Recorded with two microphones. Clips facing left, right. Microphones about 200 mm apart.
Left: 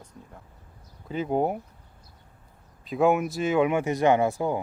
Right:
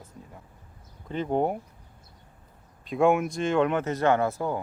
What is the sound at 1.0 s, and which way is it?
Speech, 5° left (ahead or behind).